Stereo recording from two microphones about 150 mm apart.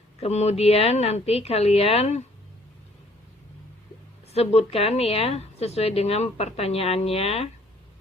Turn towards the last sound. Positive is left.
turn(degrees=45)  # may be behind; listen again after turning